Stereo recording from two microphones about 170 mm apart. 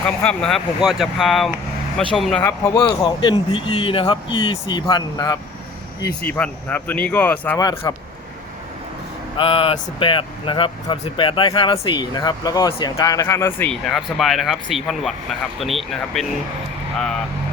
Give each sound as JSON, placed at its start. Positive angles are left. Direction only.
{"t": 0.0, "sound": "speech", "side_deg": 5}
{"t": 2.4, "sound": "speech", "side_deg": 15}
{"t": 6.0, "sound": "speech", "side_deg": 10}
{"t": 7.8, "sound": "speech", "side_deg": 25}
{"t": 9.4, "sound": "speech", "side_deg": 30}
{"t": 13.8, "sound": "speech", "side_deg": 0}